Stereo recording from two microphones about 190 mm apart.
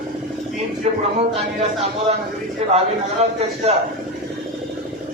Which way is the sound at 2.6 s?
35° right (ahead or behind).